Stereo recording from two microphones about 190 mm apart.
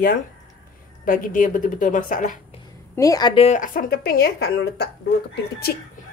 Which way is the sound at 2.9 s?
20° left (ahead or behind).